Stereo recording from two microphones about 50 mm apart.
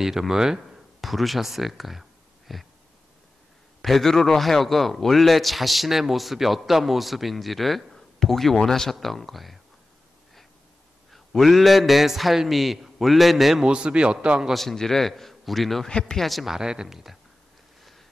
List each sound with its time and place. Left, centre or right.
0.0 s speech: centre
1.0 s speech: centre
3.8 s a man's voice: centre
11.1 s a man's voice: centre
13.7 s a man's voice: centre
14.5 s a man's voice: centre
15.9 s speech: centre
16.2 s a man's voice: centre
16.5 s speech: centre